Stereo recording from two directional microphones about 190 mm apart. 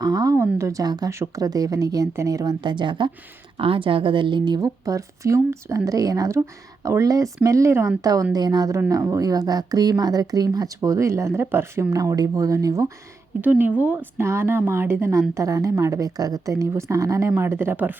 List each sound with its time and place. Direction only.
0.0 s a woman's voice: 20° right (ahead or behind)